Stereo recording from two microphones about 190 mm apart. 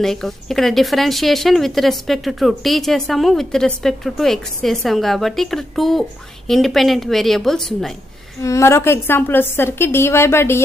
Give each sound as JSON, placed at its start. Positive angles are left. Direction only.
{"t": 0.0, "sound": "a woman's voice", "side_deg": 0}
{"t": 8.4, "sound": "a woman's voice", "side_deg": 15}